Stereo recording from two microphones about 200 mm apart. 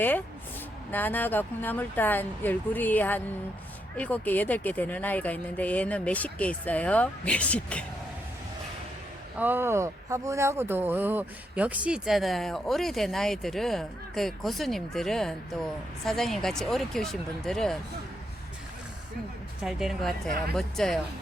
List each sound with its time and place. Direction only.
0.0 s speech: 10° left (ahead or behind)
9.4 s speech: 10° right (ahead or behind)
19.6 s speech: centre (ahead or behind)